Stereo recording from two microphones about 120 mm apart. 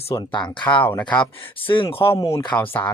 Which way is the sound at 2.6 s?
15° left (ahead or behind).